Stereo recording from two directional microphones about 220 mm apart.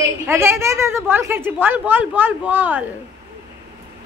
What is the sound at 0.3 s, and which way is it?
A woman's voice, 10° right (ahead or behind).